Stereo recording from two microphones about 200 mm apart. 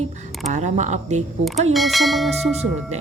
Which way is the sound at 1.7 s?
Centre (ahead or behind).